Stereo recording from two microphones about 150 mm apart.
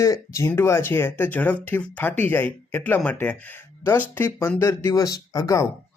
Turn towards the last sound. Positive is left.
turn(degrees=20)  # may be behind; listen again after turning